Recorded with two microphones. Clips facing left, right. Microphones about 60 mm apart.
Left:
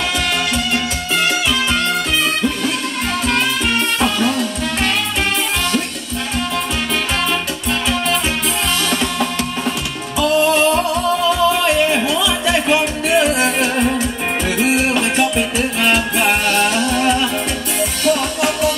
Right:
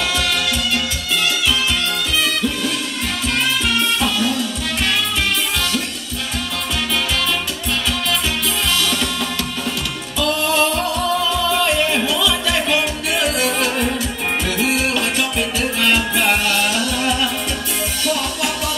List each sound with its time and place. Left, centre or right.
0.7 s music: left
4.0 s music: left
8.9 s music: left
11.9 s music: left
16.4 s music: left